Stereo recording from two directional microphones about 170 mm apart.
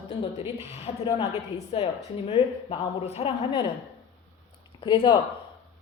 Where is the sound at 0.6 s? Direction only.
40° left (ahead or behind).